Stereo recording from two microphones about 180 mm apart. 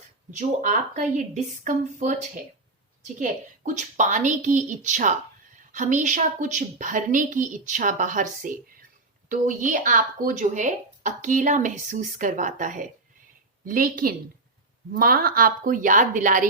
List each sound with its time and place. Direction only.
0.3 s speech: 45° right (ahead or behind)